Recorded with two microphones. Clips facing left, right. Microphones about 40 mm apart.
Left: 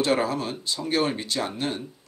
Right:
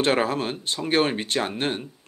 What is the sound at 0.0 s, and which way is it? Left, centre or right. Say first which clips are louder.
Speech: right 2 dB; right.